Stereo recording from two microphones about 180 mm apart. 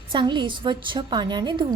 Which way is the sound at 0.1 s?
25° right (ahead or behind).